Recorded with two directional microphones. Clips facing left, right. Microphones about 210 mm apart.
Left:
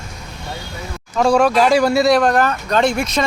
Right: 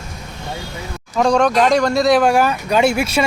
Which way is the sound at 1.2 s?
Centre (ahead or behind).